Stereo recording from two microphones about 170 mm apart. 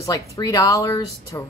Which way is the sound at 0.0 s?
20° left (ahead or behind).